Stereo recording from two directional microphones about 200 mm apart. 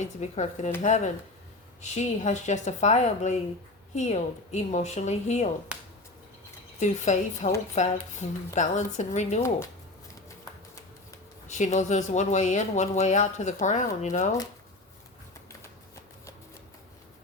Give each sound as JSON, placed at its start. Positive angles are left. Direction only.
{"t": 0.0, "sound": "speech", "side_deg": 35}
{"t": 5.7, "sound": "a sound", "side_deg": -5}
{"t": 6.7, "sound": "speech", "side_deg": 35}
{"t": 11.4, "sound": "speech", "side_deg": 35}